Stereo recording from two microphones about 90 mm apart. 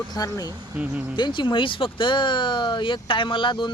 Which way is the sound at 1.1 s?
60° left (ahead or behind).